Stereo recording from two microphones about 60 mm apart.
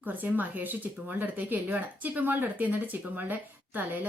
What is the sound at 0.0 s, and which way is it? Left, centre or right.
Speech, right.